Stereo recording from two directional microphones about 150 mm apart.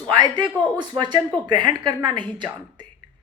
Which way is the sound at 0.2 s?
30° right (ahead or behind).